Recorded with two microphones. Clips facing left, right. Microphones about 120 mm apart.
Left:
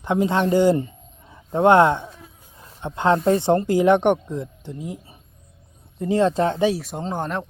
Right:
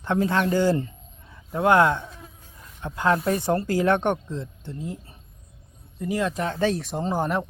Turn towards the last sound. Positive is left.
turn(degrees=-5)  # may be behind; listen again after turning